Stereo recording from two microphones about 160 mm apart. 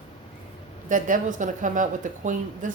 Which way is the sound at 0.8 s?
55° right (ahead or behind).